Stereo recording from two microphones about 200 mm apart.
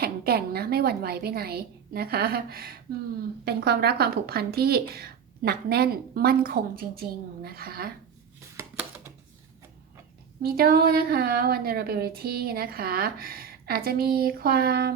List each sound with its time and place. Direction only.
0.0 s a woman's voice: 50° right (ahead or behind)
10.4 s a woman's voice: 50° right (ahead or behind)